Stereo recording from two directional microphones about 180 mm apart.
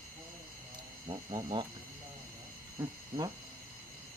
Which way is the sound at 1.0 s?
25° right (ahead or behind).